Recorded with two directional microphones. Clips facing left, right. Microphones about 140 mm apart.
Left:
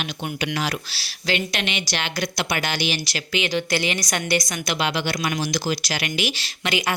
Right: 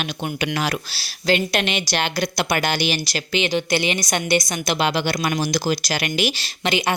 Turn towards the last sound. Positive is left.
turn(degrees=-25)  # may be behind; listen again after turning